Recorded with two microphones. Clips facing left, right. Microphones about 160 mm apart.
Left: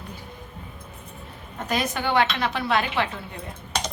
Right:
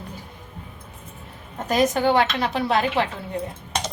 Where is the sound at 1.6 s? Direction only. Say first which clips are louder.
Right 7 dB; 45° right (ahead or behind).